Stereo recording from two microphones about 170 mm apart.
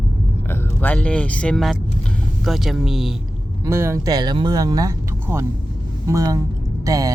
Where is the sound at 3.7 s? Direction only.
15° right (ahead or behind).